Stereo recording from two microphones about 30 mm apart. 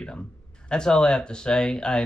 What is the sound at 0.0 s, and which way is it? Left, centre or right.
Speech, left.